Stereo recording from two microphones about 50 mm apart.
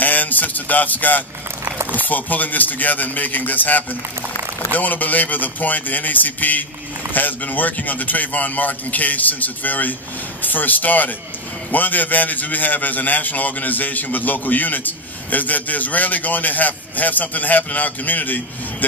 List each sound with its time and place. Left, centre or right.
0.0 s a man's voice: left